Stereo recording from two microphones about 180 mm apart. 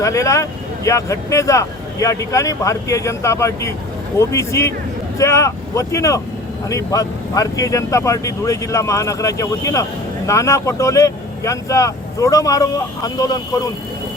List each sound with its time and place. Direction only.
0.0 s speech: 15° left (ahead or behind)